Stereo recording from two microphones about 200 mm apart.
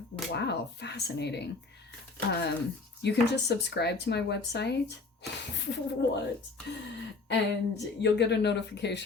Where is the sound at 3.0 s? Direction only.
55° left (ahead or behind).